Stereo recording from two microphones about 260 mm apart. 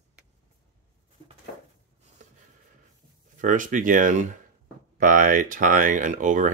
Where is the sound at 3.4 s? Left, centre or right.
Right.